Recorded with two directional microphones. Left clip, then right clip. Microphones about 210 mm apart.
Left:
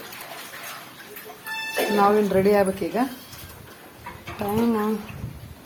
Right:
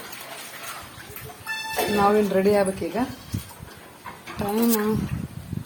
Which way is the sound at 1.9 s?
10° left (ahead or behind).